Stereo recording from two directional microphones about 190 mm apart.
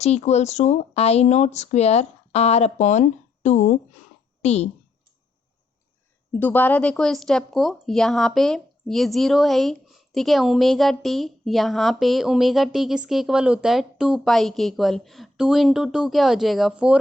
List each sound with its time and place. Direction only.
0.0 s speech: 35° left (ahead or behind)
6.3 s speech: 10° left (ahead or behind); by 17.0 s 5° right (ahead or behind)